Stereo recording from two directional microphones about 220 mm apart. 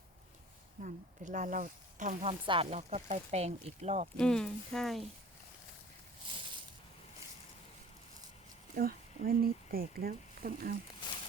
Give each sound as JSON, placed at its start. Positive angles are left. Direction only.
{"t": 0.8, "sound": "speech", "side_deg": -35}
{"t": 4.2, "sound": "speech", "side_deg": 5}
{"t": 8.7, "sound": "speech", "side_deg": -40}